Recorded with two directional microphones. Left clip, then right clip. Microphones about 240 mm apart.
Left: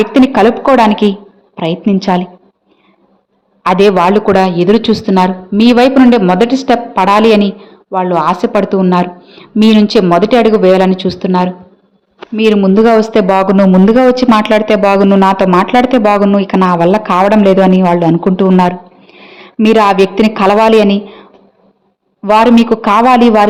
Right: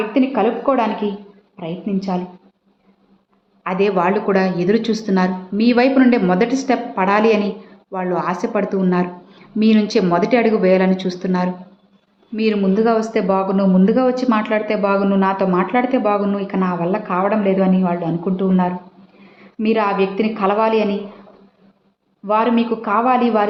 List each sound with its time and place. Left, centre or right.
0.1 s a woman's voice: left
3.6 s a woman's voice: left
22.2 s a woman's voice: left